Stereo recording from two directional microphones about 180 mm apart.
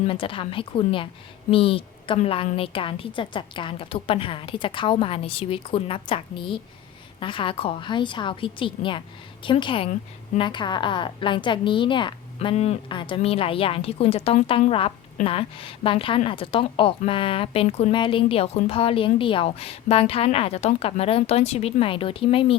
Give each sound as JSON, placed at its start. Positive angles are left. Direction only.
{"t": 0.1, "sound": "a woman's voice", "side_deg": 30}